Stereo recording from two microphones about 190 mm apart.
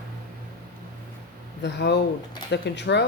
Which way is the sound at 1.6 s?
65° left (ahead or behind).